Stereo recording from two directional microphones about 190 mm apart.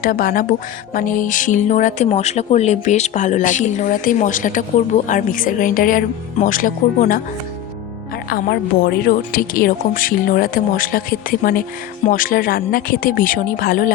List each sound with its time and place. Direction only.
0.0 s a woman's voice: 45° left (ahead or behind)
8.3 s a woman's voice: 55° left (ahead or behind)